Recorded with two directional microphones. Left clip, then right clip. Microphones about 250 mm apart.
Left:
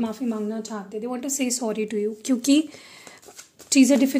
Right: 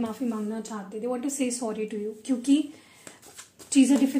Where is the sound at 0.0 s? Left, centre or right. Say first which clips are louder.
Left 3 dB; left.